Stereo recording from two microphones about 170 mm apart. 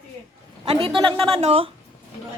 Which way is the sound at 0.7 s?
30° right (ahead or behind).